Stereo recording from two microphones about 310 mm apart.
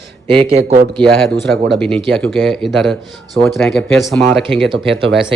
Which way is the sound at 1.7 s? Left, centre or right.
Centre.